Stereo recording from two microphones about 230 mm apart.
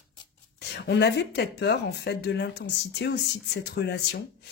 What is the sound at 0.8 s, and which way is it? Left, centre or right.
Speech, left.